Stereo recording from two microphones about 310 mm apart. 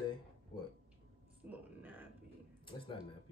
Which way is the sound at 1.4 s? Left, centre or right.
Centre.